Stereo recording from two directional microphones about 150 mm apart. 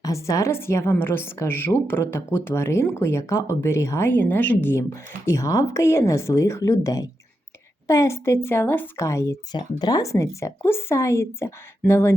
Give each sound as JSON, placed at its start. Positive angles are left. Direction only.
{"t": 0.0, "sound": "a woman's voice", "side_deg": 20}